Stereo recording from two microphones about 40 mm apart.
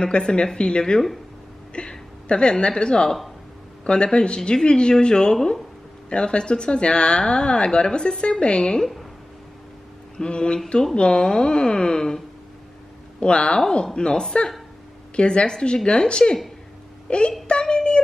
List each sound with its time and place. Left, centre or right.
0.0 s speech: left
1.7 s a sound: left
2.6 s speech: left
10.1 s speech: left
13.2 s speech: left